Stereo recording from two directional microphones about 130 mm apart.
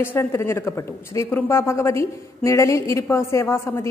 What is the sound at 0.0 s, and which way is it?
A woman's voice, 20° left (ahead or behind).